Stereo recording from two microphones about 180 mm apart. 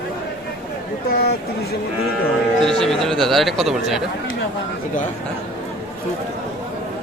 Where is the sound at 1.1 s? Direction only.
60° left (ahead or behind).